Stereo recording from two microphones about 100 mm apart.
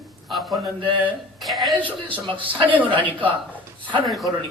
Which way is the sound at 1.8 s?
15° left (ahead or behind).